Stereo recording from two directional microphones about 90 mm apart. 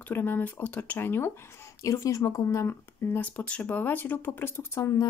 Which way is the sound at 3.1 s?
20° left (ahead or behind).